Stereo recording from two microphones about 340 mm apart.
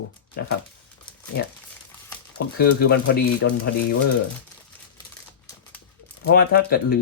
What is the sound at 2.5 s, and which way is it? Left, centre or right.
Speech, left.